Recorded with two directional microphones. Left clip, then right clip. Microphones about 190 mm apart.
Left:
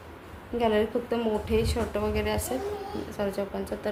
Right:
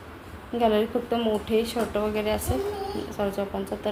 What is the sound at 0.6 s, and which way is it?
A woman's voice, 5° left (ahead or behind).